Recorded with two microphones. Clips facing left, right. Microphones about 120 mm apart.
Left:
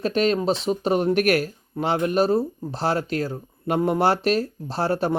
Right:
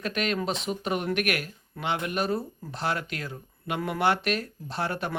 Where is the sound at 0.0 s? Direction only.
30° left (ahead or behind).